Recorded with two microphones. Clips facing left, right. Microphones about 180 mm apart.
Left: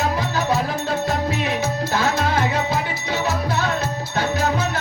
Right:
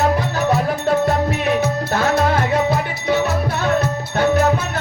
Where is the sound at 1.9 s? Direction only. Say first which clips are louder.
Right 4 dB; 55° right (ahead or behind).